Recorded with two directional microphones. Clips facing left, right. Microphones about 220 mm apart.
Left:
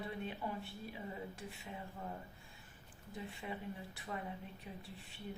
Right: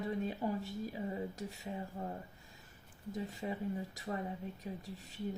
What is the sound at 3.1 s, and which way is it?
A woman's voice, 40° right (ahead or behind).